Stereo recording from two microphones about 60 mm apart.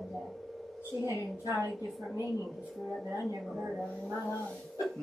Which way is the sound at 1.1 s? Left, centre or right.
Left.